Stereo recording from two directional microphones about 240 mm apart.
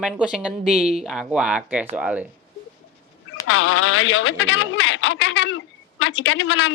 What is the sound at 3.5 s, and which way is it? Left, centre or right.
Speech, left.